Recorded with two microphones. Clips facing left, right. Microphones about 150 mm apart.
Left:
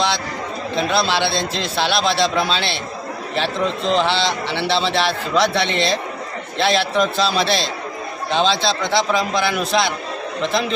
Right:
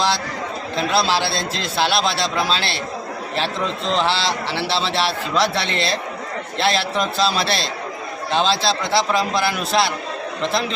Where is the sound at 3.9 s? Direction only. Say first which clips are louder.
Left 1 dB; centre (ahead or behind).